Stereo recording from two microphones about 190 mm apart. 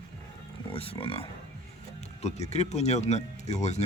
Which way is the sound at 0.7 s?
30° left (ahead or behind).